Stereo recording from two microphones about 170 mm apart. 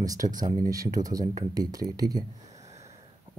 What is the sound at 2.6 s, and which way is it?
Sniff, 40° right (ahead or behind).